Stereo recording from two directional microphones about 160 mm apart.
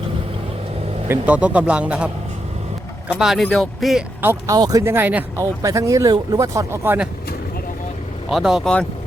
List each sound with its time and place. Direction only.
1.0 s a man's voice: 10° right (ahead or behind)
3.1 s speech: 5° right (ahead or behind)
4.2 s a man's voice: 15° right (ahead or behind)
8.3 s speech: centre (ahead or behind)